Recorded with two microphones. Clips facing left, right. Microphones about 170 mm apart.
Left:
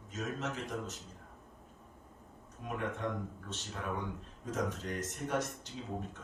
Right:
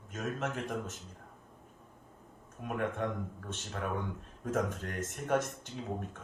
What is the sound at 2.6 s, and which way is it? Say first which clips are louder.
Speech: right 2 dB; 55° right (ahead or behind).